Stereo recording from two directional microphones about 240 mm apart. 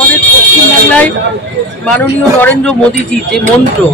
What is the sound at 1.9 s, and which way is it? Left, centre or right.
A man's voice, centre.